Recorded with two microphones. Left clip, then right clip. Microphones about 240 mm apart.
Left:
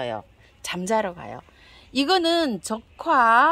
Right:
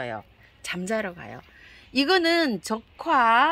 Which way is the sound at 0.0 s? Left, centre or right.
Centre.